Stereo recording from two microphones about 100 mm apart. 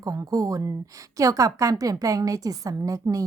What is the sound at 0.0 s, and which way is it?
Speech, 35° right (ahead or behind).